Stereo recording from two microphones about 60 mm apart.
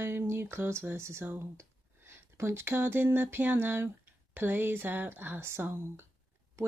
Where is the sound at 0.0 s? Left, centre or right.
Right.